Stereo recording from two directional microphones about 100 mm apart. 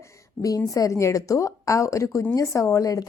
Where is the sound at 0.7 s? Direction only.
35° left (ahead or behind).